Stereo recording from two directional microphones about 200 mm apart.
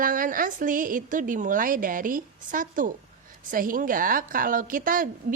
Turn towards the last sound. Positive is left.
turn(degrees=-40)  # may be behind; listen again after turning